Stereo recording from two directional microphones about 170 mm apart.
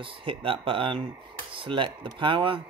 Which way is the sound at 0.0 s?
30° right (ahead or behind).